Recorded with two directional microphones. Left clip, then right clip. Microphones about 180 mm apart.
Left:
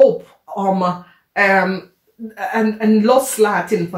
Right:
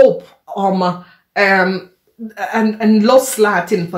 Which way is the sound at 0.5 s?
35° right (ahead or behind).